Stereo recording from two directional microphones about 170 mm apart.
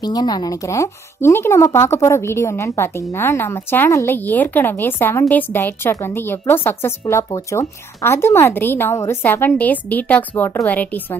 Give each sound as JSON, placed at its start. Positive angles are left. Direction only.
{"t": 0.0, "sound": "a woman's voice", "side_deg": 25}